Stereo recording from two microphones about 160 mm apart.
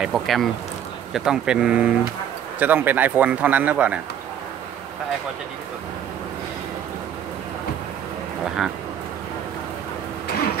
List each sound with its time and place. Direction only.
0.0 s speech: centre (ahead or behind)